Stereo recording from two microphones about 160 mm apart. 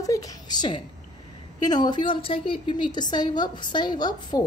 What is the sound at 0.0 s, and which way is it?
A woman's voice, 20° left (ahead or behind).